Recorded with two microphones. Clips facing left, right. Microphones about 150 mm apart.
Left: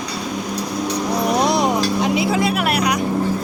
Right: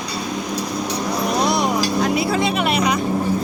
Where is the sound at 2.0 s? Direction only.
15° left (ahead or behind).